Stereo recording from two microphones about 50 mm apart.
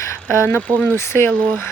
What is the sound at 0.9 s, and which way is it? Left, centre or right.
Speech, left.